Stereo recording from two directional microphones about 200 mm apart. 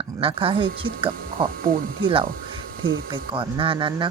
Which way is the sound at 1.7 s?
45° right (ahead or behind).